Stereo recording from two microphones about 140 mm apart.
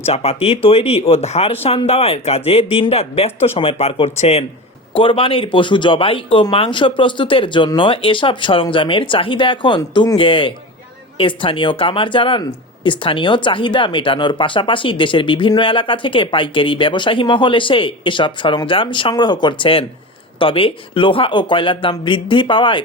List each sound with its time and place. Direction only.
0.0 s speech: 45° left (ahead or behind)